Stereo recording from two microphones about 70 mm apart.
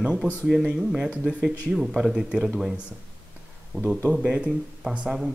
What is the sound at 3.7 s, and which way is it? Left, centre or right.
Speech, centre.